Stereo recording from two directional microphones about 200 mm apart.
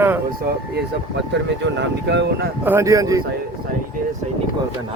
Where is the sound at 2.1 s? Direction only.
60° right (ahead or behind).